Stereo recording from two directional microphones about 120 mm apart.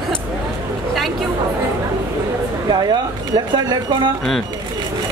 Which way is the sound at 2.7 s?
35° right (ahead or behind).